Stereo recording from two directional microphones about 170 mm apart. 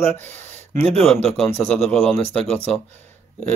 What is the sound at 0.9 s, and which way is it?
Speech, centre (ahead or behind).